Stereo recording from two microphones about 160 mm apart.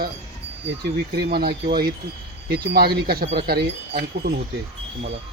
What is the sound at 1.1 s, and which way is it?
Speech, 80° right.